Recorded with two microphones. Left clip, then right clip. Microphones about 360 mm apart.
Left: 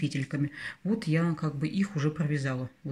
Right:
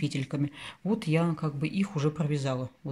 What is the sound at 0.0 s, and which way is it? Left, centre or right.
Speech, centre.